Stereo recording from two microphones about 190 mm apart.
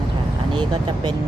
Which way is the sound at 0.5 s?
25° right (ahead or behind).